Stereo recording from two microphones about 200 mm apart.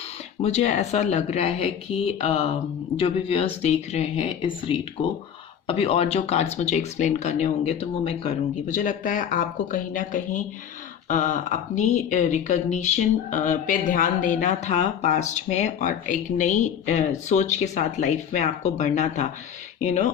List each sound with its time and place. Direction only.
0.4 s speech: 35° left (ahead or behind)